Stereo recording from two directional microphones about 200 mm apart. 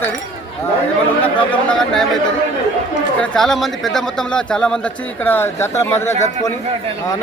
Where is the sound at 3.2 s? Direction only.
5° left (ahead or behind).